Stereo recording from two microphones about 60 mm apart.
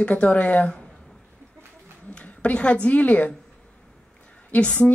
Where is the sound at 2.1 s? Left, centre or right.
Centre.